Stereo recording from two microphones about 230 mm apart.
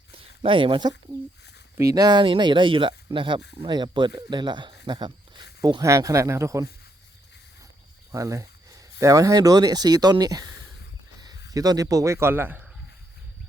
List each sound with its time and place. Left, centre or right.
0.1 s a sound: right
1.8 s speech: centre
8.1 s speech: centre
11.5 s speech: centre